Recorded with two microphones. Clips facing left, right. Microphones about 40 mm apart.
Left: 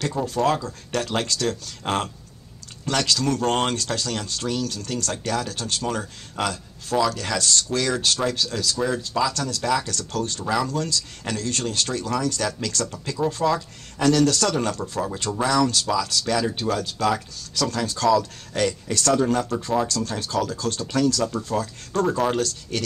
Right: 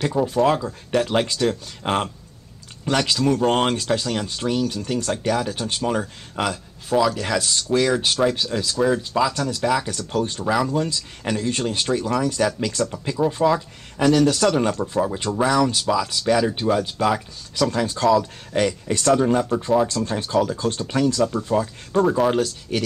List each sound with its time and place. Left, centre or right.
0.0 s speech: centre